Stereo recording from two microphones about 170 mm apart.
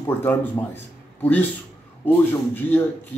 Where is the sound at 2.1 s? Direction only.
10° left (ahead or behind).